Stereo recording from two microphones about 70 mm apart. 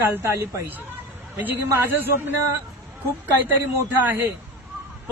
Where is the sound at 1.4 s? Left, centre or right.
Right.